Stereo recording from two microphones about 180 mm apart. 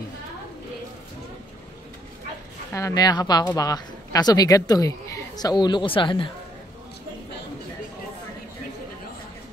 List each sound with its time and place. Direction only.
2.7 s speech: 20° left (ahead or behind)